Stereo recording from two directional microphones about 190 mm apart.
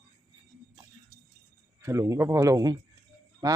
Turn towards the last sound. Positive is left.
turn(degrees=-15)  # may be behind; listen again after turning